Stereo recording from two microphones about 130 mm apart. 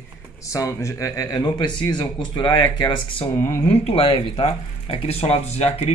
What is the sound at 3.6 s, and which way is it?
Speech, 50° left (ahead or behind).